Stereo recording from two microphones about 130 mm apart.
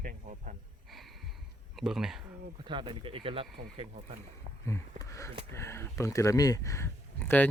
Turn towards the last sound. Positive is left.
turn(degrees=15)  # may be behind; listen again after turning